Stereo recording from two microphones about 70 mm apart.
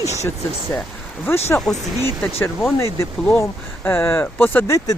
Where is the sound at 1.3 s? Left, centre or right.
Left.